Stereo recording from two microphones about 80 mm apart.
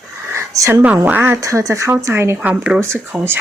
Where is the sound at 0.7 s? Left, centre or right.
Centre.